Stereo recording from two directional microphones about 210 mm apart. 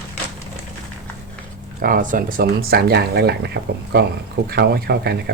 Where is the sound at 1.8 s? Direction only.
40° right (ahead or behind).